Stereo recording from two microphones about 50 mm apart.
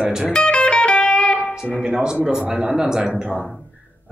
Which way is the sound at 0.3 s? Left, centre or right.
Left.